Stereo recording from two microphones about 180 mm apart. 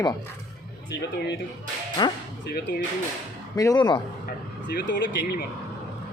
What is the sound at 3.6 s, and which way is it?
Speech, 20° left (ahead or behind).